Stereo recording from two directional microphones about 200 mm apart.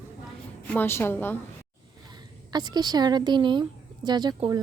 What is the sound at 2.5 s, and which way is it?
A woman's voice, 20° right (ahead or behind).